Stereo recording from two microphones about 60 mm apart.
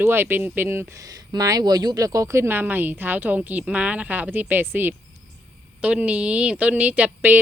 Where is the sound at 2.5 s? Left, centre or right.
Right.